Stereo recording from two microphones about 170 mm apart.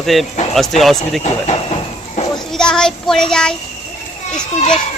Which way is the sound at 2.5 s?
5° left (ahead or behind).